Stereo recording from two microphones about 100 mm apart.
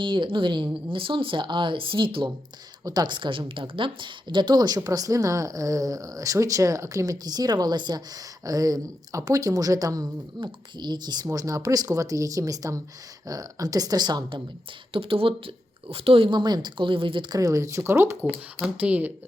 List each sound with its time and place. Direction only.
0.0 s speech: 55° right (ahead or behind)
2.8 s speech: 45° right (ahead or behind)
10.4 s speech: 50° right (ahead or behind)
11.3 s speech: 35° right (ahead or behind)
14.9 s speech: 65° right (ahead or behind)
16.3 s speech: 45° right (ahead or behind)
17.3 s speech: 35° right (ahead or behind)
18.6 s speech: 15° right (ahead or behind)